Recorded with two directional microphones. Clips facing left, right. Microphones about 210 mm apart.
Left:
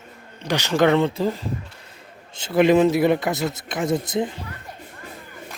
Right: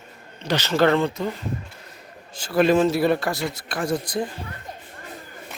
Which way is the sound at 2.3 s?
20° left (ahead or behind).